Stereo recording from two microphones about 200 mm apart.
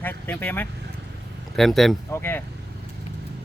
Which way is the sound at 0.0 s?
10° left (ahead or behind).